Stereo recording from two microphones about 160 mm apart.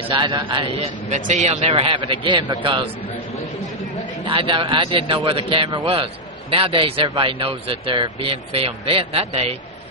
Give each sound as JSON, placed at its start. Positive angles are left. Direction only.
{"t": 0.1, "sound": "a man's voice", "side_deg": -30}
{"t": 1.1, "sound": "speech", "side_deg": -45}
{"t": 4.3, "sound": "speech", "side_deg": -30}